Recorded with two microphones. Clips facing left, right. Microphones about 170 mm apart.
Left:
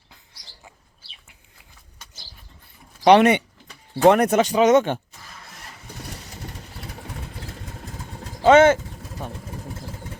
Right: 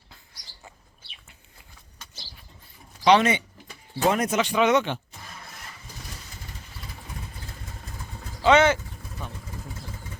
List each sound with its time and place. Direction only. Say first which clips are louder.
3.0 s speech: left 5 dB; 60° left (ahead or behind)
4.4 s speech: left 5 dB; 40° left (ahead or behind)
6.0 s vehicle: left 8 dB; 70° left (ahead or behind)
8.4 s vehicle: left 5 dB; 50° left (ahead or behind)